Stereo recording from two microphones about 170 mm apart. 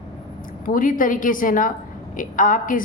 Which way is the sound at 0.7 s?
55° left (ahead or behind).